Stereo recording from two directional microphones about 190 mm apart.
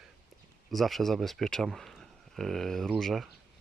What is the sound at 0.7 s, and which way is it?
Speech, centre (ahead or behind).